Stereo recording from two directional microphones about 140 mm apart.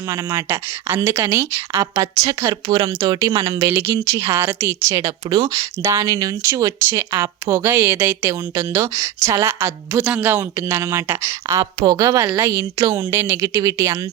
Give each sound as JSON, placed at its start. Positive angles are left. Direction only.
{"t": 0.1, "sound": "speech", "side_deg": -20}
{"t": 2.5, "sound": "speech", "side_deg": -35}
{"t": 11.6, "sound": "speech", "side_deg": -35}